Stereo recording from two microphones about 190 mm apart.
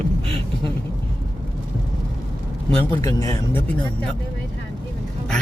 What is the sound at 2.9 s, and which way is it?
Speech, 15° left (ahead or behind).